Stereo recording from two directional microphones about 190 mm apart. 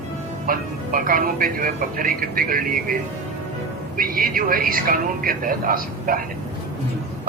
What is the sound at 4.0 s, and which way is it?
A man's voice, 50° right (ahead or behind).